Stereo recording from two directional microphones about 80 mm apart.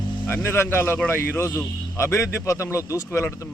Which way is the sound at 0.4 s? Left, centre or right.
Left.